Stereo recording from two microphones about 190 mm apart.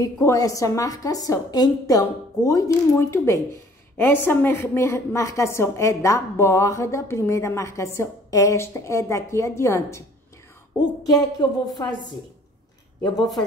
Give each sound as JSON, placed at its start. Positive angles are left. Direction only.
{"t": 0.0, "sound": "a woman's voice", "side_deg": 15}
{"t": 11.1, "sound": "a woman's voice", "side_deg": 20}